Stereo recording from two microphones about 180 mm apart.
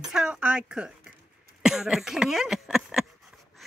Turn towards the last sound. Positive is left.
turn(degrees=0)  # may be behind; listen again after turning